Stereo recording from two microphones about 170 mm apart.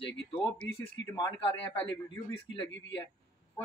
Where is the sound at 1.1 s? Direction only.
30° left (ahead or behind).